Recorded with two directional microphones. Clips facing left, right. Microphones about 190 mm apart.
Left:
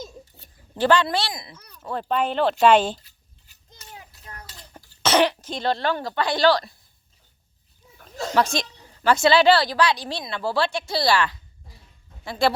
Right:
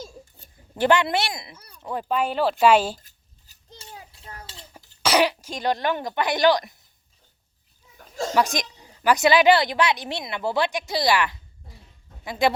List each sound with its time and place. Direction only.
0.8 s speech: 20° right (ahead or behind)
1.5 s a woman's voice: 10° right (ahead or behind)
3.0 s a sound: 45° right (ahead or behind)
3.8 s a sound: 30° right (ahead or behind)
5.0 s a woman's voice: 10° right (ahead or behind)
8.3 s a woman's voice: 15° right (ahead or behind)